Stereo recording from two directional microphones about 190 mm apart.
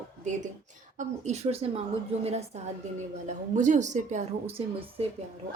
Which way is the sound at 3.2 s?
40° right (ahead or behind).